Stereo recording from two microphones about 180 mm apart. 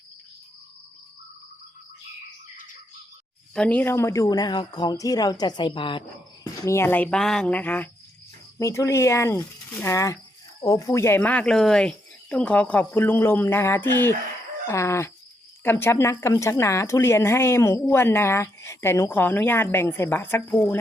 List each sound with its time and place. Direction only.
3.5 s a woman's voice: 5° left (ahead or behind)
20.3 s speech: 25° left (ahead or behind)